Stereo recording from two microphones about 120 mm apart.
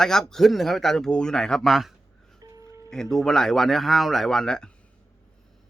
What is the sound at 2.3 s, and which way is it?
Music, 30° right (ahead or behind).